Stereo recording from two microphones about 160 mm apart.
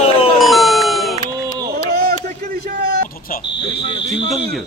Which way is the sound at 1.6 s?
75° right (ahead or behind).